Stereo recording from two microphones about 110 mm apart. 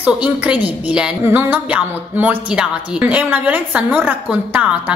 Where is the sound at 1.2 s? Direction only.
20° right (ahead or behind).